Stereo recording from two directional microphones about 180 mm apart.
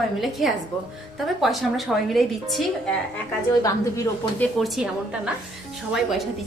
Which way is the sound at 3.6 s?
20° left (ahead or behind).